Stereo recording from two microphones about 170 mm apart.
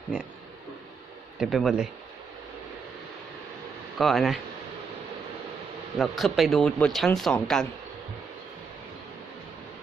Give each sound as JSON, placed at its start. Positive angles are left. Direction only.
{"t": 1.4, "sound": "speech", "side_deg": 0}
{"t": 3.9, "sound": "speech", "side_deg": 0}
{"t": 6.0, "sound": "speech", "side_deg": 0}